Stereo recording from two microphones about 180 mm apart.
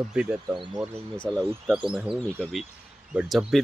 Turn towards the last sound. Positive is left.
turn(degrees=0)  # may be behind; listen again after turning